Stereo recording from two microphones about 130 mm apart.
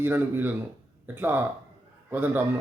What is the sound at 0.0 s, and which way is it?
Speech, 15° right (ahead or behind).